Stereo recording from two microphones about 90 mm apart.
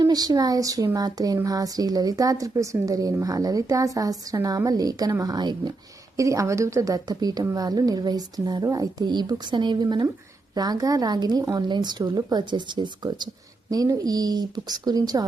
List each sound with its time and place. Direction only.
0.0 s speech: 45° right (ahead or behind)
6.1 s speech: 35° right (ahead or behind)